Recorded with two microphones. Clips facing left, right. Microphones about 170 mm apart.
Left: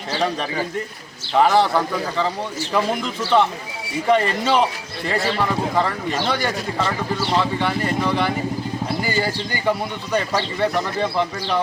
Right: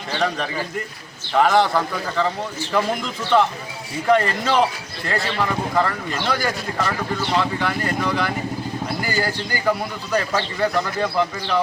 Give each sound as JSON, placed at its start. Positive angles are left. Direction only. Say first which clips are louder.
{"t": 0.1, "sound": "a man's voice", "louder": "left 1 dB", "side_deg": 0}
{"t": 6.7, "sound": "speech", "louder": "left 1 dB", "side_deg": 30}
{"t": 7.2, "sound": "a man's voice", "louder": "left 1 dB", "side_deg": 0}